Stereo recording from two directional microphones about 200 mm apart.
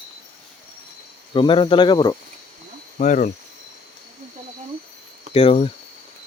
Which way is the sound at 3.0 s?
40° left (ahead or behind).